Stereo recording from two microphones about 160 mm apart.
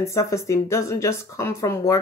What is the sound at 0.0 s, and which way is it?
Speech, 20° left (ahead or behind).